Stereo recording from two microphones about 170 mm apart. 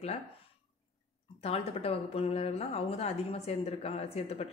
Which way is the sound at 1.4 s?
40° left (ahead or behind).